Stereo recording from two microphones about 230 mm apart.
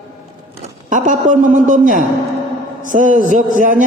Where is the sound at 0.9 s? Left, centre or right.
Right.